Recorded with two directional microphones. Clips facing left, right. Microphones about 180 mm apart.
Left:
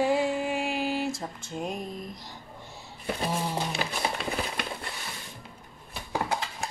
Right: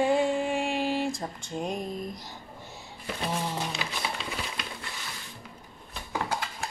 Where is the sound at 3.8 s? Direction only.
45° left (ahead or behind).